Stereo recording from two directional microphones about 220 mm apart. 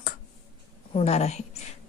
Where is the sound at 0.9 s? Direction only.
30° left (ahead or behind).